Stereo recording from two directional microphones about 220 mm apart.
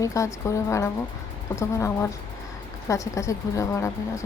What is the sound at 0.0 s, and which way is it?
Speech, 15° left (ahead or behind).